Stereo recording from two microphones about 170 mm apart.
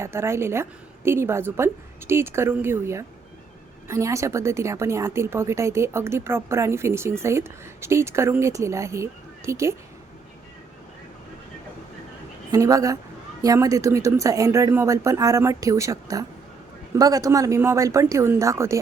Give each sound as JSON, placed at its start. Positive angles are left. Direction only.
{"t": 0.0, "sound": "a woman's voice", "side_deg": -15}
{"t": 12.5, "sound": "a woman's voice", "side_deg": -20}